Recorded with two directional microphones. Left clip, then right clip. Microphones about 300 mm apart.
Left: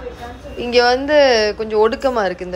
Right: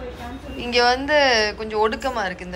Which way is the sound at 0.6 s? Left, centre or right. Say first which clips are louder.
Left 4 dB; centre.